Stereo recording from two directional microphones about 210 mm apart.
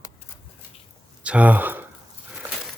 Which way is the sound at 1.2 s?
5° right (ahead or behind).